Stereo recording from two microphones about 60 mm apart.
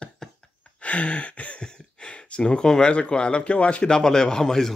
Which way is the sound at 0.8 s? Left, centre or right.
Left.